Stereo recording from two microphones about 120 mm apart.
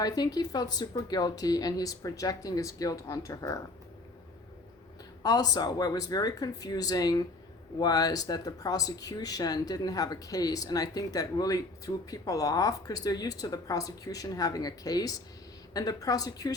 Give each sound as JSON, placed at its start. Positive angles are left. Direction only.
{"t": 0.0, "sound": "speech", "side_deg": 30}
{"t": 5.2, "sound": "speech", "side_deg": 35}